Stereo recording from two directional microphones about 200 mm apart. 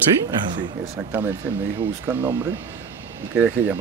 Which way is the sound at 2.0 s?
10° right (ahead or behind).